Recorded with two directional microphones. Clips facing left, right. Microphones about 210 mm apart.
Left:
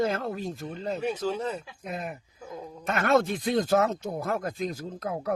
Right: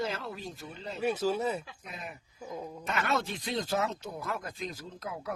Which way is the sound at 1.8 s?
45° left (ahead or behind).